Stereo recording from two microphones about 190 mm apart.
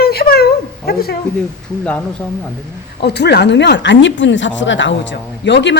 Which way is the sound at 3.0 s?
60° left (ahead or behind).